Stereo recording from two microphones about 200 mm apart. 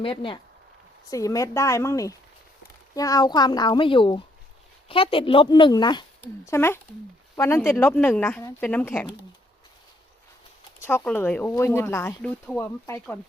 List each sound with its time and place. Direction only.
0.0 s speech: 25° left (ahead or behind); by 9.0 s 10° left (ahead or behind)
10.8 s speech: 10° left (ahead or behind)